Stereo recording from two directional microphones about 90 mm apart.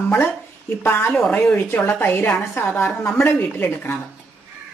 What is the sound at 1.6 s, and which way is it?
Speech, 25° left (ahead or behind).